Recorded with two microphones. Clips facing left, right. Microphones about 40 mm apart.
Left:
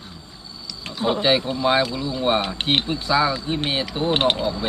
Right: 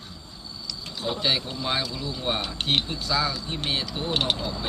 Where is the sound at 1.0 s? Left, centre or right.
Left.